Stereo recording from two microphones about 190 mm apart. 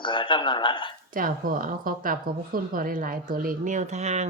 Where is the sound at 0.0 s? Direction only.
25° left (ahead or behind).